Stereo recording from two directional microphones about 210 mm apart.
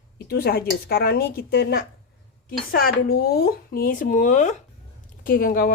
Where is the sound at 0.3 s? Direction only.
50° left (ahead or behind).